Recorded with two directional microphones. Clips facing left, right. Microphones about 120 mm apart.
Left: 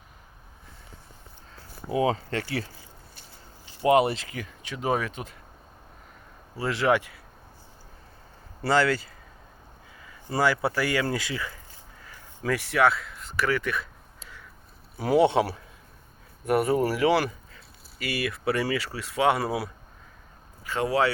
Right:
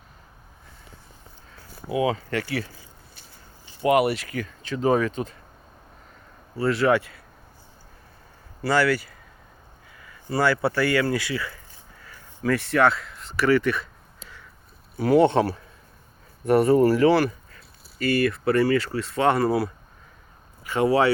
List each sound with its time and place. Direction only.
1.9 s speech: 35° left (ahead or behind)
3.8 s speech: 25° left (ahead or behind); by 5.3 s 5° left (ahead or behind)
6.6 s speech: 20° left (ahead or behind)
8.6 s speech: 25° left (ahead or behind)
10.2 s speech: 15° left (ahead or behind)
14.9 s speech: 15° left (ahead or behind)
20.7 s speech: 5° right (ahead or behind)